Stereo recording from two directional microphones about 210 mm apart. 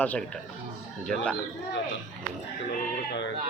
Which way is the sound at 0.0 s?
5° left (ahead or behind).